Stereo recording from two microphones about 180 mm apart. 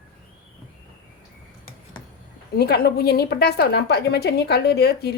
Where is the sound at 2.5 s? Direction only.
65° left (ahead or behind).